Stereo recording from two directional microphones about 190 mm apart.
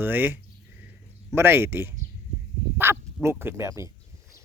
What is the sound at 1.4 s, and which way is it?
Speech, 10° right (ahead or behind).